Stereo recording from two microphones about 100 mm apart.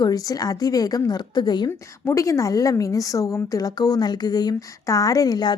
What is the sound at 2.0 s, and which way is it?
A woman's voice, 30° left (ahead or behind).